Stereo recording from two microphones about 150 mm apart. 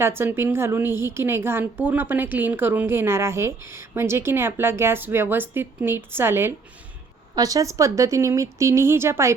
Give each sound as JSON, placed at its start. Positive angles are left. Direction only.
{"t": 0.0, "sound": "a woman's voice", "side_deg": -15}